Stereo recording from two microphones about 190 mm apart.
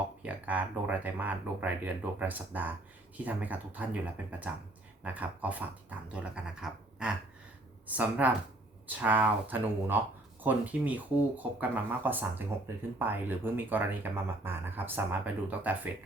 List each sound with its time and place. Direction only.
0.2 s speech: 10° right (ahead or behind)